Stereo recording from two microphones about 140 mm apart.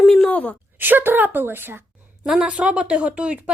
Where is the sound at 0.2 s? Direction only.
10° left (ahead or behind).